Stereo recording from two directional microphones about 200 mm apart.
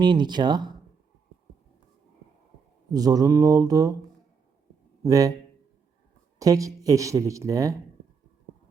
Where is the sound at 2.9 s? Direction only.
20° right (ahead or behind).